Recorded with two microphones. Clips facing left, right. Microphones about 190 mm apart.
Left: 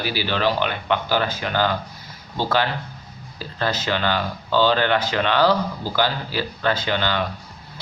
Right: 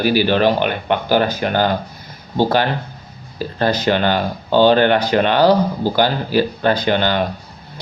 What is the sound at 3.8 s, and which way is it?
Speech, 55° right (ahead or behind).